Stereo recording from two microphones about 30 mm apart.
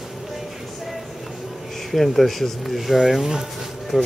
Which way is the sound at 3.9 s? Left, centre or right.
Right.